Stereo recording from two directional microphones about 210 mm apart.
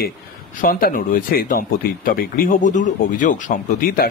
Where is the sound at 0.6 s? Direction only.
40° left (ahead or behind).